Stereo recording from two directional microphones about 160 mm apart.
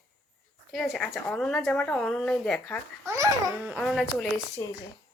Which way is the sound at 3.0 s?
15° right (ahead or behind).